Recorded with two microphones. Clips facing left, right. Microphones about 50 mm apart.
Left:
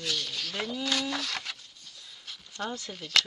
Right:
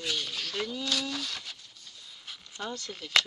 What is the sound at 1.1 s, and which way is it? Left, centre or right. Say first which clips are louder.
Speech: left 3 dB; left.